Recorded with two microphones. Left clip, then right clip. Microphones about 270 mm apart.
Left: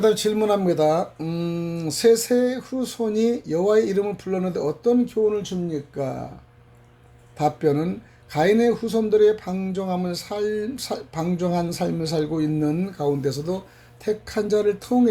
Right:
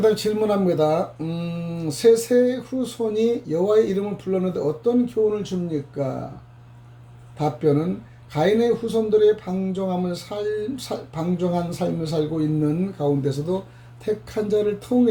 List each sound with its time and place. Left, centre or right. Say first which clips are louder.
0.0 s speech: even; left
7.3 s speech: even; left